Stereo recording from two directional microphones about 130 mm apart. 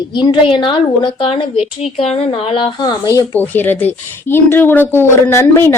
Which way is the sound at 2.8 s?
30° left (ahead or behind).